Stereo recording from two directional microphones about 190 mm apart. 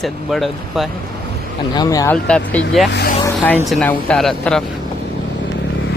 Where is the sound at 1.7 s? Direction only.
20° left (ahead or behind); by 4.6 s centre (ahead or behind).